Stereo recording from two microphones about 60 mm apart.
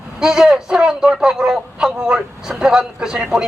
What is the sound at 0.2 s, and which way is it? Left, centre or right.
A man's voice, centre.